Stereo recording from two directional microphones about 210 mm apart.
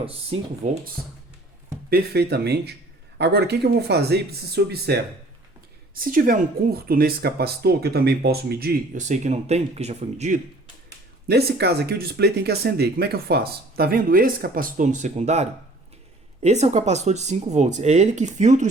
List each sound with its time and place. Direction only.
0.0 s speech: 30° right (ahead or behind)
1.9 s speech: 50° right (ahead or behind)
11.3 s speech: 50° right (ahead or behind)